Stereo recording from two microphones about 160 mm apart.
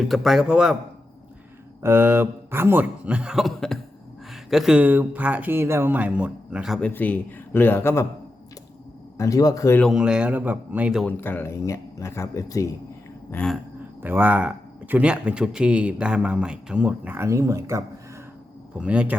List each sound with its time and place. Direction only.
0.0 s speech: centre (ahead or behind)
1.8 s speech: 15° right (ahead or behind)
6.7 s speech: 10° left (ahead or behind)
9.1 s speech: 20° left (ahead or behind)
9.8 s speech: 5° right (ahead or behind)
11.0 s speech: 10° left (ahead or behind)
13.3 s speech: 5° left (ahead or behind)
14.0 s speech: 10° right (ahead or behind)
18.8 s speech: 10° right (ahead or behind)